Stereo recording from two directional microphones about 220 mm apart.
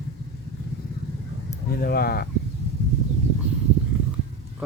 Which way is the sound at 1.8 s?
45° left (ahead or behind).